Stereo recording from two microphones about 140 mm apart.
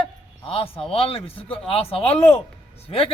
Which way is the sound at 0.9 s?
45° left (ahead or behind).